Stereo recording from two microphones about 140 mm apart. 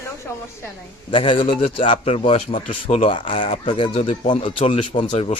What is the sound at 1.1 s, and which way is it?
A man's voice, 40° left (ahead or behind).